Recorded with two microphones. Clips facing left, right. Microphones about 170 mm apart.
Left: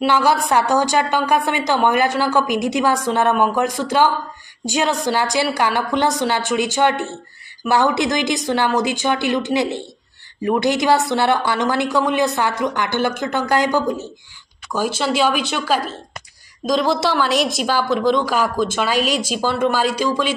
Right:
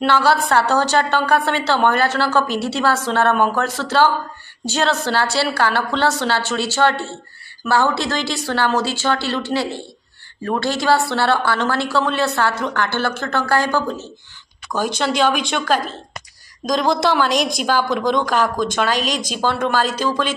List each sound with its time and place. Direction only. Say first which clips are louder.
0.0 s a woman's voice: even; 15° left (ahead or behind)